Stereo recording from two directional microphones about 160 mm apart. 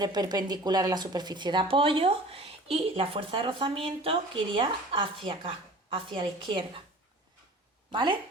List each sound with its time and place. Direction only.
0.0 s speech: 25° right (ahead or behind)
7.9 s speech: 30° right (ahead or behind)